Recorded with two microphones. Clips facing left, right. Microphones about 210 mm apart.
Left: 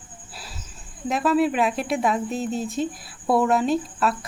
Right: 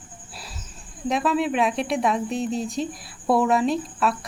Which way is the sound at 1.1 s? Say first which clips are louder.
Left 2 dB; centre (ahead or behind).